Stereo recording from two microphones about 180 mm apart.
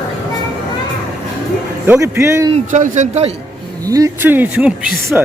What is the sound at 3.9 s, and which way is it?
Speech, 20° right (ahead or behind).